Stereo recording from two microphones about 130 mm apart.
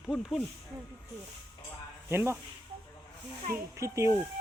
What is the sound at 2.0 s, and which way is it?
Speech, 20° right (ahead or behind).